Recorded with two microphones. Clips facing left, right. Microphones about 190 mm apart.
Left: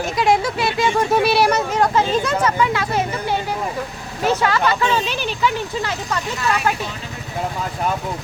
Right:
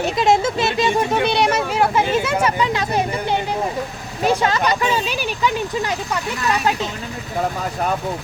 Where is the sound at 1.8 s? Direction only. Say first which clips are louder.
Right 1 dB; 10° right (ahead or behind).